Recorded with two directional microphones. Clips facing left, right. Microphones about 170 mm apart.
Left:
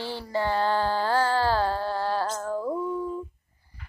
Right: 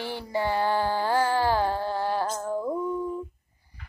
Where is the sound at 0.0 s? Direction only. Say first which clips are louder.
Even; 15° right (ahead or behind).